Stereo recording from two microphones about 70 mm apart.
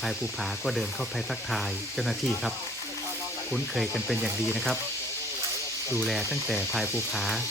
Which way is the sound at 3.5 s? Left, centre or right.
Centre.